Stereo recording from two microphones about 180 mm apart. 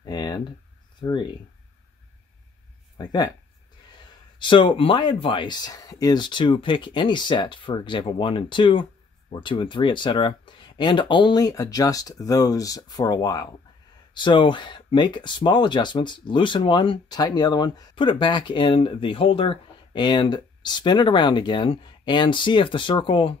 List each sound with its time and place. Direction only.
0.0 s a sound: 20° left (ahead or behind)
1.0 s speech: 25° left (ahead or behind)
3.0 s speech: 20° left (ahead or behind)
4.4 s speech: 25° left (ahead or behind)